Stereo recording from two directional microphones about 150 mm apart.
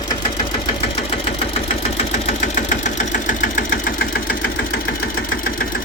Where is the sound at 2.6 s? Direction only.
55° left (ahead or behind); by 4.8 s 75° left (ahead or behind).